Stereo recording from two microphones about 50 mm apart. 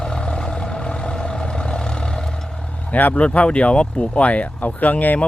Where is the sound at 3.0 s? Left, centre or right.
Left.